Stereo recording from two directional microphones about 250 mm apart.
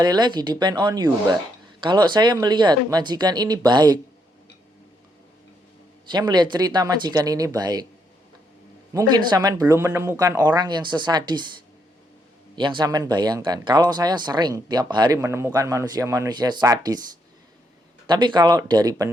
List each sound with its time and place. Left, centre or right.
0.0 s speech: centre
6.1 s speech: centre
8.9 s speech: centre
18.0 s speech: centre